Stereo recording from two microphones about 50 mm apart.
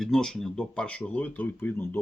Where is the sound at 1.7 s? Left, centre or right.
Left.